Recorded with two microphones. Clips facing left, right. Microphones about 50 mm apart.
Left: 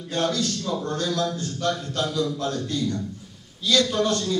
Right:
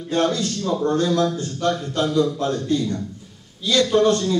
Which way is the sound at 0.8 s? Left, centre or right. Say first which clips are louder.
Right 8 dB; right.